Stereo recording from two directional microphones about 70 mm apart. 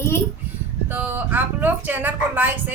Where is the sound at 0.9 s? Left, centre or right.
Right.